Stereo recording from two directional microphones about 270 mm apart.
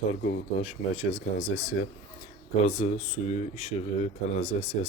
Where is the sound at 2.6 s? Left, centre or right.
Left.